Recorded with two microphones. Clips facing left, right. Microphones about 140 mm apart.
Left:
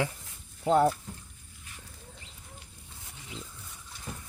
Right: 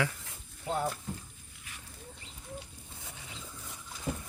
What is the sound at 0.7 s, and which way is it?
Speech, 75° left (ahead or behind).